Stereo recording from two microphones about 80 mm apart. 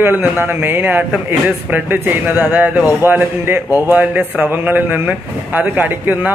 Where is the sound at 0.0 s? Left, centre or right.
Right.